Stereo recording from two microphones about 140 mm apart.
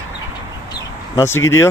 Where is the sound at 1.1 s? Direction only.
20° left (ahead or behind).